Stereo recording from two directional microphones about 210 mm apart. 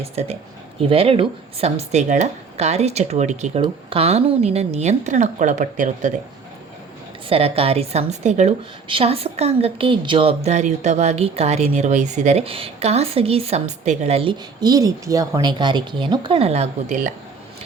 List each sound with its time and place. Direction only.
0.0 s a woman's voice: 30° right (ahead or behind)
7.3 s a woman's voice: 30° right (ahead or behind)